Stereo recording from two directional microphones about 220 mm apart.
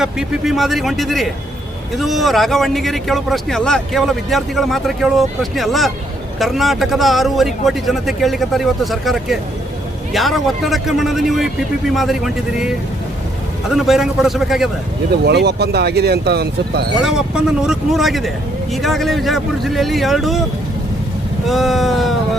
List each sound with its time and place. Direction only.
0.0 s a man's voice: centre (ahead or behind)
15.1 s speech: 50° right (ahead or behind)
17.0 s a man's voice: 5° right (ahead or behind)
21.4 s a man's voice: centre (ahead or behind)